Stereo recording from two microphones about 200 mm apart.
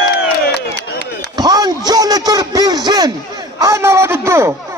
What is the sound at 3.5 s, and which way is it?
A man's voice, 15° right (ahead or behind).